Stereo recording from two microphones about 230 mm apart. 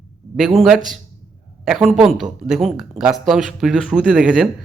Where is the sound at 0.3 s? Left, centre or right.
Centre.